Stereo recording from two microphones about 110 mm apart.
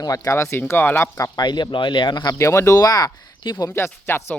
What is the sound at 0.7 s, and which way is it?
Speech, 20° left (ahead or behind).